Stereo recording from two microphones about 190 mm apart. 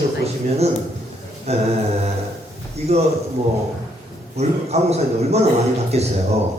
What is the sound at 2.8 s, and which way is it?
Speech, 35° right (ahead or behind).